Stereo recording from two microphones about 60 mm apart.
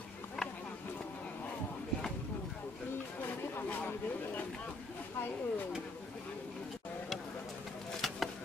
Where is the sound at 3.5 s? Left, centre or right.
Left.